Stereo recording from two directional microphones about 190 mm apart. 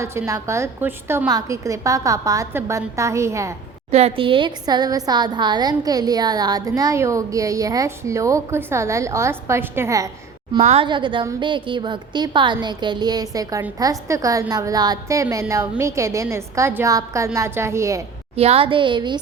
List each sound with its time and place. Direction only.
0.0 s a woman's voice: 15° right (ahead or behind)
3.9 s a woman's voice: 30° right (ahead or behind); by 10.1 s 15° right (ahead or behind)
10.6 s a woman's voice: 30° right (ahead or behind); by 18.0 s 15° right (ahead or behind)
18.3 s a woman's voice: 30° right (ahead or behind)